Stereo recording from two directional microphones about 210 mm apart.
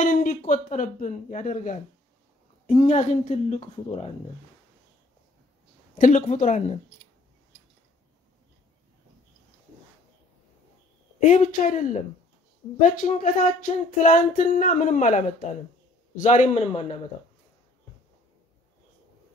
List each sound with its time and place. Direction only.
0.0 s a sound: 40° left (ahead or behind)
0.5 s speech: 35° left (ahead or behind)
5.9 s speech: 35° left (ahead or behind)
11.1 s speech: 35° left (ahead or behind)